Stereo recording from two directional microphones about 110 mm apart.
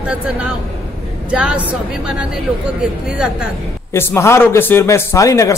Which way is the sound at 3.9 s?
25° left (ahead or behind).